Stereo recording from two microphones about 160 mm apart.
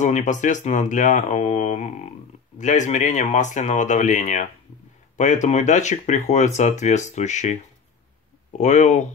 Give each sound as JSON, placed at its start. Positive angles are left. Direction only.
{"t": 0.0, "sound": "speech", "side_deg": 50}
{"t": 8.5, "sound": "speech", "side_deg": 45}